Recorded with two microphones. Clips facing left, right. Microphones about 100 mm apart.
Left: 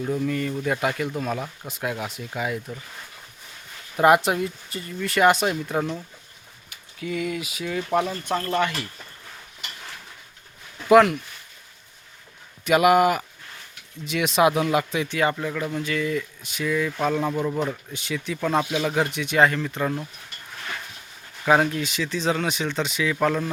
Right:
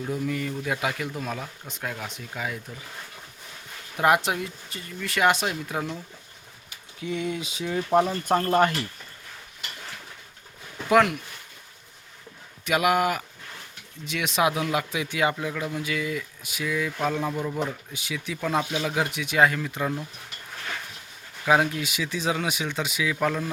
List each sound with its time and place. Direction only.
0.0 s speech: 5° right (ahead or behind)
3.9 s speech: centre (ahead or behind)
7.0 s speech: 25° right (ahead or behind); by 8.7 s 40° right (ahead or behind)
10.8 s speech: centre (ahead or behind)
12.6 s speech: centre (ahead or behind)
21.4 s speech: 5° right (ahead or behind)